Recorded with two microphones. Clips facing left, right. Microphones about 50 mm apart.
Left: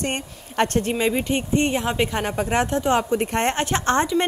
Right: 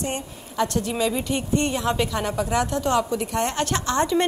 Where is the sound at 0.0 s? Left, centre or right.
Left.